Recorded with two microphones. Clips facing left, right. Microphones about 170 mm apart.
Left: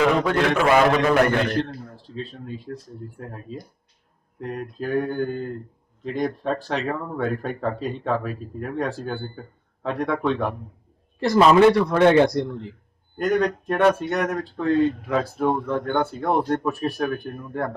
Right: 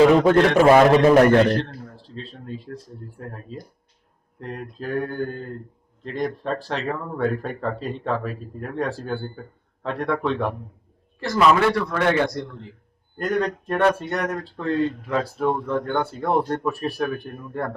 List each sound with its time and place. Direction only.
0.3 s a man's voice: 35° right (ahead or behind)
2.0 s speech: centre (ahead or behind)
11.3 s a man's voice: 25° left (ahead or behind)
13.1 s speech: centre (ahead or behind)